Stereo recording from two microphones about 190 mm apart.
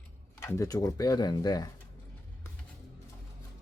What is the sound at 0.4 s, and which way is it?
Speech, 15° left (ahead or behind).